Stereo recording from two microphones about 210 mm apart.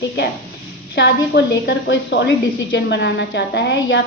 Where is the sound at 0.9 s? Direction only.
55° left (ahead or behind).